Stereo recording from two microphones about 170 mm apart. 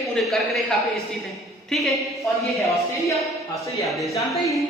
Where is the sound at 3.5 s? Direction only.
20° left (ahead or behind).